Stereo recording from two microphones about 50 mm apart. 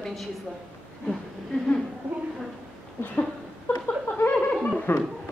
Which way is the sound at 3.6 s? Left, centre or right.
Left.